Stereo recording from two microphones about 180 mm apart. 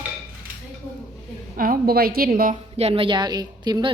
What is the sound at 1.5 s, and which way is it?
A woman's voice, 50° right (ahead or behind).